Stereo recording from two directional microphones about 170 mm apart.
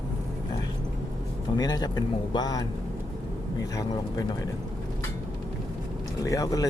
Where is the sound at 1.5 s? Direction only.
25° left (ahead or behind).